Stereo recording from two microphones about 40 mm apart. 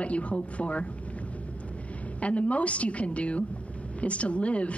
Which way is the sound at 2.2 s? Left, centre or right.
Left.